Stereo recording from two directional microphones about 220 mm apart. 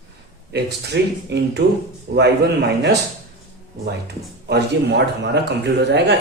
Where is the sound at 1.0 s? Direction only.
55° right (ahead or behind).